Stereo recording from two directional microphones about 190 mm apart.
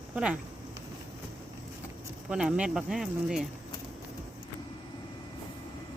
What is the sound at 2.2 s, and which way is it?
Speech, 5° right (ahead or behind).